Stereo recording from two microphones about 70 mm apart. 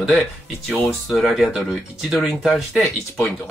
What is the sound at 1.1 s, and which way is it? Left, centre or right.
Speech, centre.